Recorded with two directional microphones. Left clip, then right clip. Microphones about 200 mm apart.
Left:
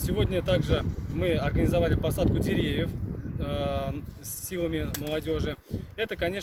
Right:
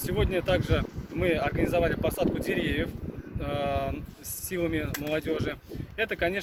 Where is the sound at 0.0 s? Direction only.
15° left (ahead or behind).